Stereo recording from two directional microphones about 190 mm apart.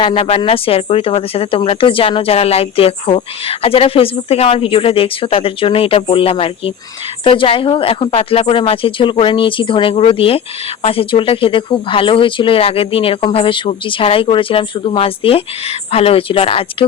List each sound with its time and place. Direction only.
0.0 s speech: 30° left (ahead or behind)